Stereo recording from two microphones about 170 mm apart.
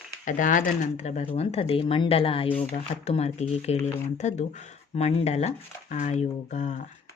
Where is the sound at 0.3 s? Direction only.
50° left (ahead or behind).